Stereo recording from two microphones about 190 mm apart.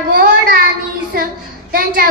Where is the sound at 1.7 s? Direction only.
50° right (ahead or behind).